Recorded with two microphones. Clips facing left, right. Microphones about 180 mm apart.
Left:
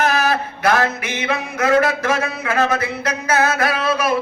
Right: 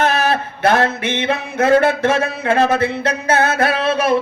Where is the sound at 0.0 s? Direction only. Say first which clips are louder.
Right 1 dB; 30° right (ahead or behind).